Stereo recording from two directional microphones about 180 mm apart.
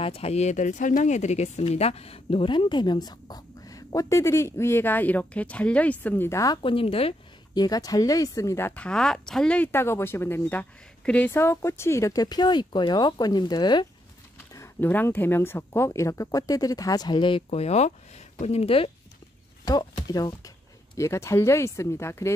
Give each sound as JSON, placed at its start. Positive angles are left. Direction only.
{"t": 0.0, "sound": "speech", "side_deg": 35}